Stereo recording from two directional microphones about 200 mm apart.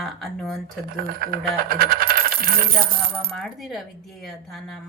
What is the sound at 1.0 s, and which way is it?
Coin, 50° right (ahead or behind).